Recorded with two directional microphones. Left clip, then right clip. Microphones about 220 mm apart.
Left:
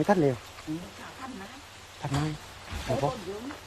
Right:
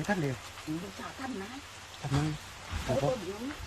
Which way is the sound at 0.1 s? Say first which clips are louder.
Left 8 dB; 25° left (ahead or behind).